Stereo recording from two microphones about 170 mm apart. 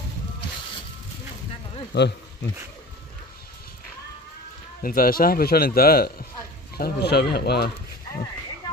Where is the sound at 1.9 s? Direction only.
90° left.